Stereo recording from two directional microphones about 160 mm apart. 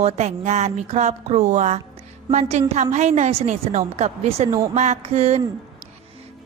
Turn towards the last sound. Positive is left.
turn(degrees=-40)  # may be behind; listen again after turning